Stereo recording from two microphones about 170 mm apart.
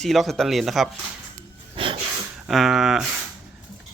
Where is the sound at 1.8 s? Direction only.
30° right (ahead or behind).